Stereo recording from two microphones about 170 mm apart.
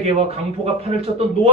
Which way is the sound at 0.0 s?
35° right (ahead or behind).